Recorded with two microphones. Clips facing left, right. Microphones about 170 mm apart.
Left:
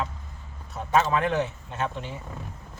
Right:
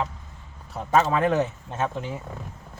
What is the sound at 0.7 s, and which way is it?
Speech, 35° right (ahead or behind).